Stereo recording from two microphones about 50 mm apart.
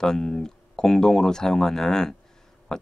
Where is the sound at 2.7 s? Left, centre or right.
Centre.